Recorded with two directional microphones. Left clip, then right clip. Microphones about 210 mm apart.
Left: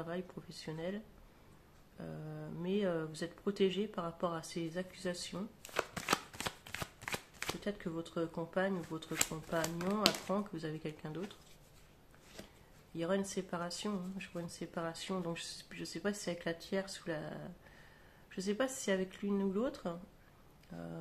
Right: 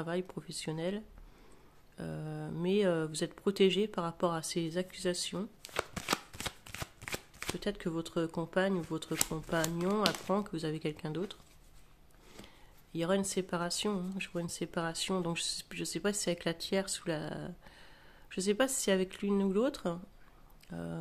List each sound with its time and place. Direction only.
0.0 s speech: 50° right (ahead or behind)
5.7 s shuffling cards: 15° right (ahead or behind)
7.6 s speech: 50° right (ahead or behind)
12.9 s speech: 50° right (ahead or behind)